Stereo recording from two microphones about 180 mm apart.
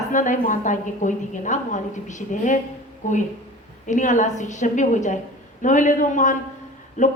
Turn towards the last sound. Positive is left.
turn(degrees=45)  # may be behind; listen again after turning